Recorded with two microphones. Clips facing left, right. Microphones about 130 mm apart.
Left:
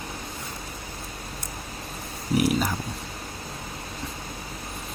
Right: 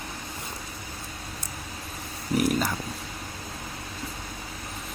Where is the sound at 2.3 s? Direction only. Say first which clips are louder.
Left 1 dB; 5° left (ahead or behind).